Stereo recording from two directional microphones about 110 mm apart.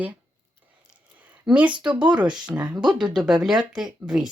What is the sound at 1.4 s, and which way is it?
Speech, 10° right (ahead or behind).